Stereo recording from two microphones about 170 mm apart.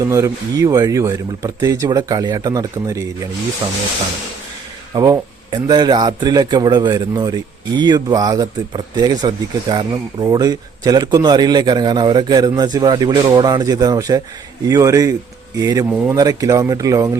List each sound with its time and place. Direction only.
0.0 s speech: 20° right (ahead or behind)
4.9 s speech: 20° right (ahead or behind)